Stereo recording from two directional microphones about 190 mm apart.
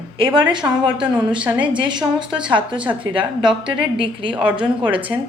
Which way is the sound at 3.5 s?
5° right (ahead or behind).